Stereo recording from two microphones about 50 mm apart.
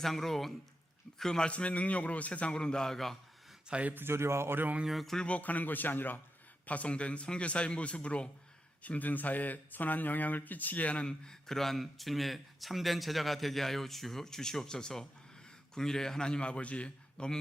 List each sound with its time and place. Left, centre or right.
0.0 s a man's voice: centre
3.7 s speech: right
3.9 s speech: right
4.9 s speech: centre
5.2 s a man's voice: left
6.7 s a man's voice: left